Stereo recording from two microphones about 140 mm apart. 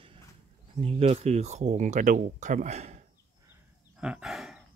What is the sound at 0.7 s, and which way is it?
Speech, 45° right (ahead or behind).